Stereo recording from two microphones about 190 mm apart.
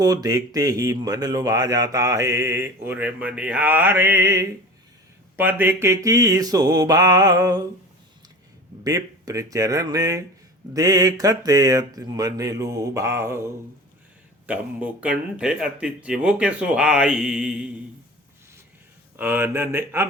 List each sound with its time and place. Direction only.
0.0 s speech: 20° right (ahead or behind)
5.4 s mantra: 10° right (ahead or behind)
8.8 s speech: 20° right (ahead or behind)
19.1 s speech: 10° right (ahead or behind)